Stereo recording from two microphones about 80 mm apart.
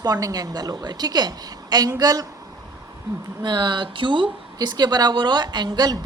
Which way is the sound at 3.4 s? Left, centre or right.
Right.